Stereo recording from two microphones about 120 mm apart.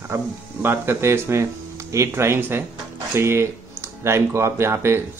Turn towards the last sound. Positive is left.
turn(degrees=-20)  # may be behind; listen again after turning